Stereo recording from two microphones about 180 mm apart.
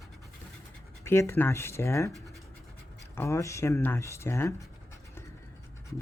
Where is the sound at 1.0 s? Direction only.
15° left (ahead or behind).